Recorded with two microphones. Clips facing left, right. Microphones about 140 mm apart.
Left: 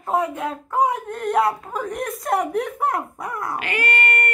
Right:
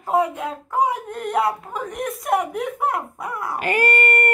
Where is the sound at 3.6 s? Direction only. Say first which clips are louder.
Right 7 dB; 45° right (ahead or behind).